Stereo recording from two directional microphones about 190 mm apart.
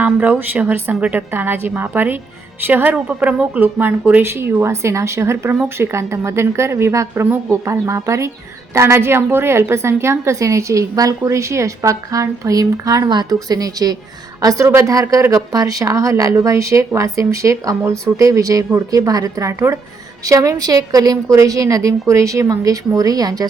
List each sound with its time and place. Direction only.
0.0 s a woman's voice: 10° right (ahead or behind)